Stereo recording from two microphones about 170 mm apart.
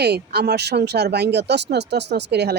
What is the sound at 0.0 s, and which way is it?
Speech, 75° right (ahead or behind).